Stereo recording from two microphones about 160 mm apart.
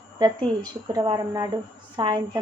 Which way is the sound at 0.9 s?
25° right (ahead or behind).